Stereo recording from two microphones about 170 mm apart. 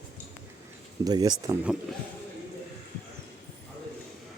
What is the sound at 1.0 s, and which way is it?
Speech, 20° right (ahead or behind).